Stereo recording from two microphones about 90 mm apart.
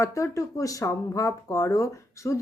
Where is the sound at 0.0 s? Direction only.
35° left (ahead or behind).